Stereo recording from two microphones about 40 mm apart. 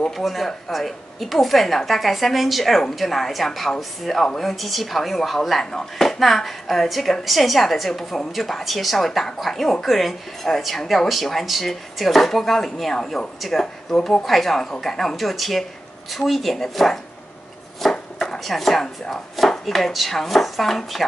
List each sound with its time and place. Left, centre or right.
0.1 s a woman's voice: centre
5.6 s a woman's voice: centre
17.8 s chopping: centre
18.2 s a woman's voice: centre